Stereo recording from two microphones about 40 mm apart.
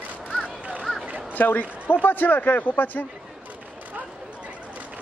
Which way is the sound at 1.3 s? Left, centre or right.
Left.